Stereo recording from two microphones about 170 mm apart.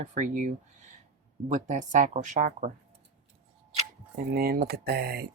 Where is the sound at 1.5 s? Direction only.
45° right (ahead or behind).